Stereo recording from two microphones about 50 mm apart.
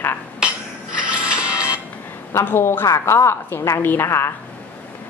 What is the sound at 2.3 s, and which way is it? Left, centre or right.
Speech, left.